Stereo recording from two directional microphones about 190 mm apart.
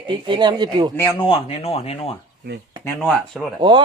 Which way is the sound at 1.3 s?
30° left (ahead or behind).